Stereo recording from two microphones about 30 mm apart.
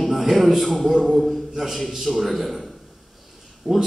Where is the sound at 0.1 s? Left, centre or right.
Centre.